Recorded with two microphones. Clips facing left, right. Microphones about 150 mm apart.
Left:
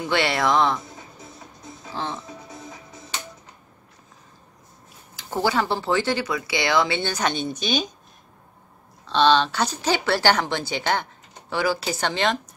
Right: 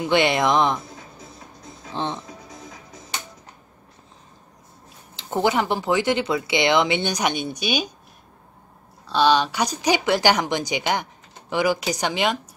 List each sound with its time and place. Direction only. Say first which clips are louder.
0.0 s speech: right 3 dB; 20° right (ahead or behind)
2.0 s speech: right 3 dB; 25° right (ahead or behind)
5.1 s speech: right 2 dB; 20° right (ahead or behind)
9.0 s speech: even; 10° right (ahead or behind)